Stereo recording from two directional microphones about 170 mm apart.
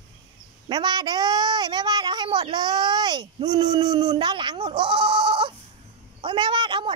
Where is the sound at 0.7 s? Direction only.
25° right (ahead or behind).